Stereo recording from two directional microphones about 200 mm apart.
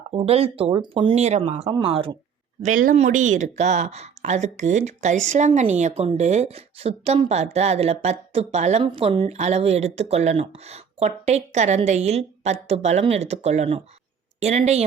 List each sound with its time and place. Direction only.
0.1 s speech: 30° right (ahead or behind)
2.6 s speech: 40° right (ahead or behind)